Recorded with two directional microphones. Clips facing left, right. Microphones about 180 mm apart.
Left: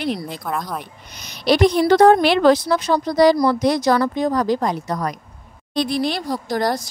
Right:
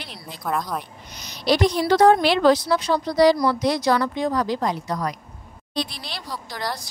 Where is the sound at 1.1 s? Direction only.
60° left (ahead or behind).